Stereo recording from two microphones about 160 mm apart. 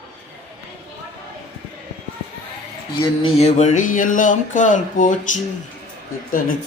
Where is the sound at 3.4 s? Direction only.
45° left (ahead or behind).